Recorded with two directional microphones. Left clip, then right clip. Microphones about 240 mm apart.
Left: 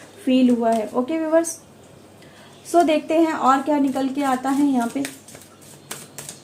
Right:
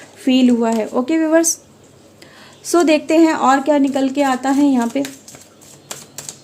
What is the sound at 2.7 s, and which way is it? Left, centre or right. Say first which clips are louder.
A woman's voice: right 4 dB; right.